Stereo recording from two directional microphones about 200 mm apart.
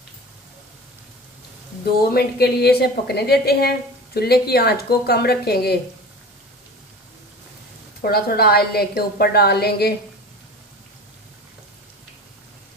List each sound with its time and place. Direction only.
2.1 s a woman's voice: 50° left (ahead or behind)
8.0 s a woman's voice: 50° left (ahead or behind)